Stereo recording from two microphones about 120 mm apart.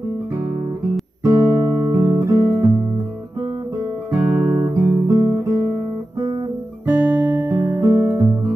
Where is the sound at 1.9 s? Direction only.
15° right (ahead or behind).